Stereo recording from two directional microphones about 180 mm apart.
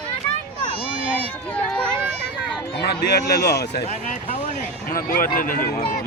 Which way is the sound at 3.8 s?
40° left (ahead or behind).